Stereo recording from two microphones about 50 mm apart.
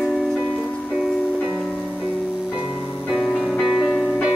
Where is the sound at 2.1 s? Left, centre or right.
Right.